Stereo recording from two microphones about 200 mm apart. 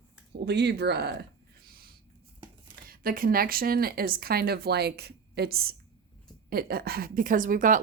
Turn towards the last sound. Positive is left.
turn(degrees=-40)  # may be behind; listen again after turning